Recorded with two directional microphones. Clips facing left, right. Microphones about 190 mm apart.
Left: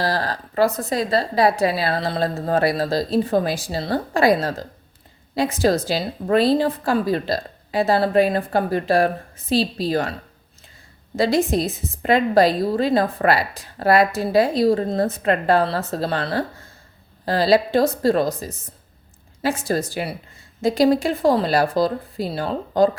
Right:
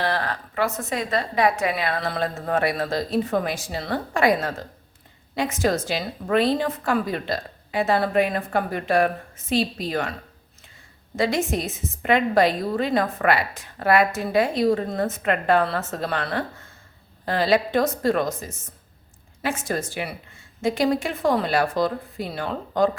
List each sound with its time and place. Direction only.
0.0 s a woman's voice: 35° left (ahead or behind)
11.2 s a woman's voice: 35° left (ahead or behind)